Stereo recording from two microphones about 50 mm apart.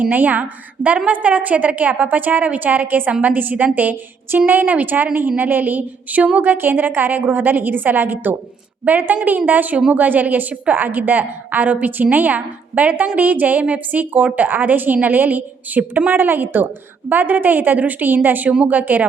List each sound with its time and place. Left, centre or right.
0.0 s a woman's voice: right
8.8 s a woman's voice: right